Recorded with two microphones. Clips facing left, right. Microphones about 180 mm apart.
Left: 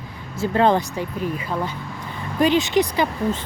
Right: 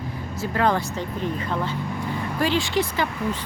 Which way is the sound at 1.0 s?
10° left (ahead or behind).